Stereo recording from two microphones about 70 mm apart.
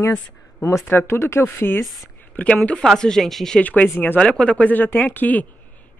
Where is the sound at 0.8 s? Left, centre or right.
Left.